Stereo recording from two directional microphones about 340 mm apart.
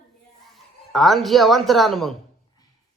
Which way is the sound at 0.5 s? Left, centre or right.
Centre.